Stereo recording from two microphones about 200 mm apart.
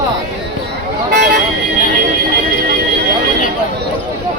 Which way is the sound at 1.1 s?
55° right (ahead or behind).